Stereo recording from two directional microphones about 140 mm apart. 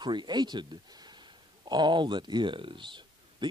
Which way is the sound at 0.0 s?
35° right (ahead or behind).